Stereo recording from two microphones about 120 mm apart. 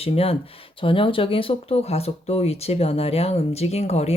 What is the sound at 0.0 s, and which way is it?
Speech, 55° left (ahead or behind).